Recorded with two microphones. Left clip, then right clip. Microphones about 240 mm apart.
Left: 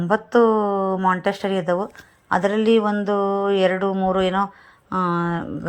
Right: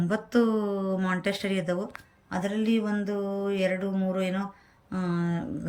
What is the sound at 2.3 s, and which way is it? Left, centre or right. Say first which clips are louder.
Speech: left 12 dB; left.